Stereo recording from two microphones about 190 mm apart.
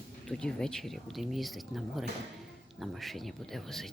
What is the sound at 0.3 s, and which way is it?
Speech, 5° left (ahead or behind).